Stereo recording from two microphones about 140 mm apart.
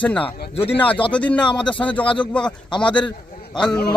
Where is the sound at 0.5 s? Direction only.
40° left (ahead or behind).